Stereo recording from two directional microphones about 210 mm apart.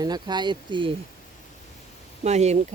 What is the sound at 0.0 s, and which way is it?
Speech, 20° right (ahead or behind).